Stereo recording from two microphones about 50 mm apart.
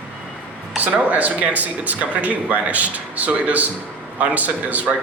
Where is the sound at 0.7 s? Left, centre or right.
Right.